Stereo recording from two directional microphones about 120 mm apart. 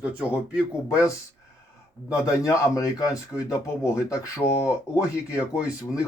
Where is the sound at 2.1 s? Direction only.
30° left (ahead or behind).